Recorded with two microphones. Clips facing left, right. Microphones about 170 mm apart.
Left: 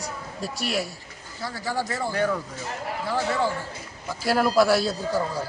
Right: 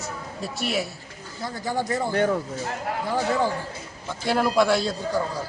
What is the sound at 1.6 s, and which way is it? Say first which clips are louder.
Speech: right 2 dB; 20° right (ahead or behind).